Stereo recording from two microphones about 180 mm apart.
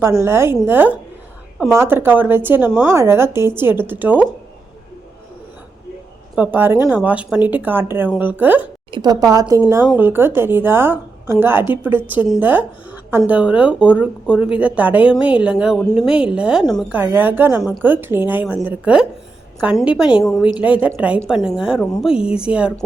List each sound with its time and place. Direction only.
0.2 s a woman's voice: 15° right (ahead or behind)
6.3 s a woman's voice: 10° right (ahead or behind)
8.9 s a woman's voice: 20° right (ahead or behind); by 22.7 s 5° right (ahead or behind)